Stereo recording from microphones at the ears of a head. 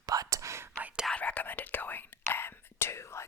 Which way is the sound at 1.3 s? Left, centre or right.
Left.